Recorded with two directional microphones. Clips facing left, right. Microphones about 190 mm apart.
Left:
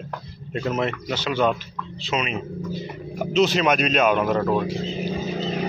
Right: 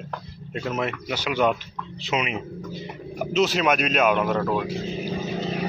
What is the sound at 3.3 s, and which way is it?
Speech, 5° right (ahead or behind).